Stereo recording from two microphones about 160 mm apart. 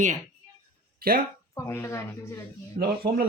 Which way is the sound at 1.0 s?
65° right (ahead or behind).